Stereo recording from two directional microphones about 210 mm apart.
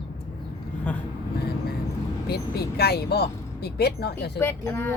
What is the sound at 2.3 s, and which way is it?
Speech, 50° left (ahead or behind).